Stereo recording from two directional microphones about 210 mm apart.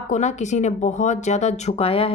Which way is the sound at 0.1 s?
35° left (ahead or behind).